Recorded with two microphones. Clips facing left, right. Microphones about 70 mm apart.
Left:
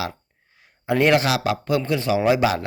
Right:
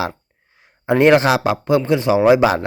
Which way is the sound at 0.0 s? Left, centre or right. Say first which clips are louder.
Right 5 dB; right.